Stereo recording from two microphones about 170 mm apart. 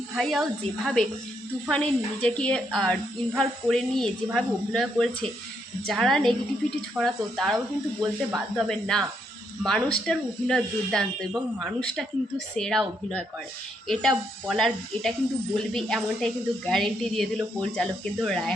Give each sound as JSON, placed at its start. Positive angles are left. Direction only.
{"t": 0.2, "sound": "a woman's voice", "side_deg": 0}
{"t": 1.7, "sound": "a woman's voice", "side_deg": 5}